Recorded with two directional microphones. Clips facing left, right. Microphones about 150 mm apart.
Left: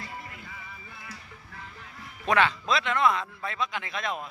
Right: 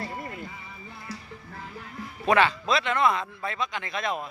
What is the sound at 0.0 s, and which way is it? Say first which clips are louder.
Music: right 7 dB; 40° right (ahead or behind).